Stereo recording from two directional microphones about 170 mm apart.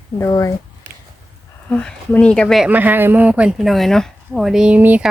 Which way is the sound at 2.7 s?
10° right (ahead or behind).